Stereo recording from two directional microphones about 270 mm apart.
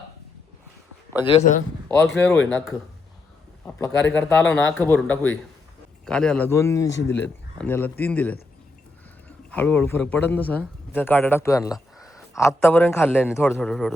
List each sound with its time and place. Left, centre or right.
1.1 s a man's voice: centre
2.1 s a man's voice: centre
9.5 s a man's voice: centre